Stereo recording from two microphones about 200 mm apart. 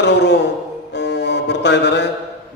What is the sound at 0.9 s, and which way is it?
Music, 60° left (ahead or behind).